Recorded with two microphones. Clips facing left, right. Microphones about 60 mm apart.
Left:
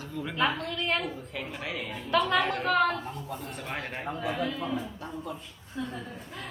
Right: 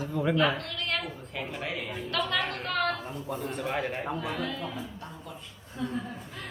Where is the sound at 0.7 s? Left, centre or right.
Left.